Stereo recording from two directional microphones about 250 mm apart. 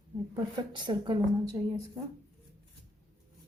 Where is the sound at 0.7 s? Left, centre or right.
Centre.